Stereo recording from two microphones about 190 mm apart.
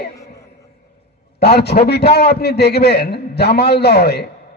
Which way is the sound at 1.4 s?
60° left (ahead or behind).